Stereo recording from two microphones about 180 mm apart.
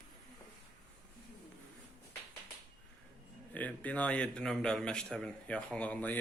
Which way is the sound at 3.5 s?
10° left (ahead or behind).